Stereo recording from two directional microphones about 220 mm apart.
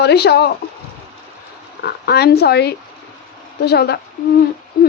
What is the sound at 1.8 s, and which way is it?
Speech, 45° left (ahead or behind).